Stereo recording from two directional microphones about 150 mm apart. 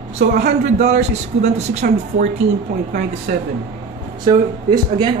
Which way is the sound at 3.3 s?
90° right.